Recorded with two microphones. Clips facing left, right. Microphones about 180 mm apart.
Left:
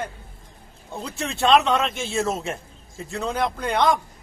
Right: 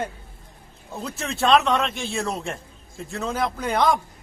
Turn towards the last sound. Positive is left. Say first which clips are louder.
# even
turn(degrees=0)  # may be behind; listen again after turning